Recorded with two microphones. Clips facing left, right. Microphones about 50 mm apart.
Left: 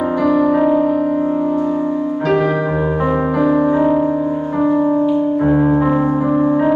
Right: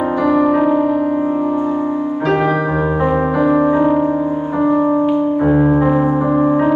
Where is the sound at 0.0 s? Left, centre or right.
Centre.